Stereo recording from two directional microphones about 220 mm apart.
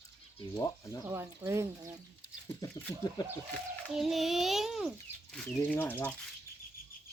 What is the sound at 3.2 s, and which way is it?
Speech, 20° left (ahead or behind).